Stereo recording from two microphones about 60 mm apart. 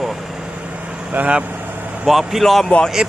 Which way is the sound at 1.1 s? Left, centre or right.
Right.